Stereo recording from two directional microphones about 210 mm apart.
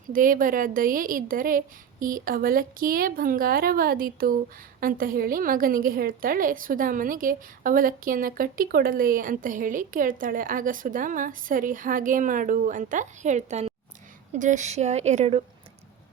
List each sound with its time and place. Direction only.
0.1 s a woman's voice: 40° right (ahead or behind)